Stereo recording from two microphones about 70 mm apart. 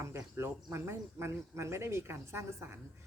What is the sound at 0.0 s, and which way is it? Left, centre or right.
A woman's voice, right.